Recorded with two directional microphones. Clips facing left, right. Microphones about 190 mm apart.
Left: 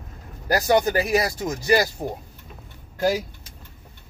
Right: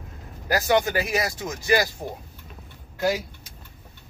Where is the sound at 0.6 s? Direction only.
35° left (ahead or behind).